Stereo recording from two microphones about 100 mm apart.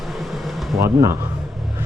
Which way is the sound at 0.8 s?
30° right (ahead or behind).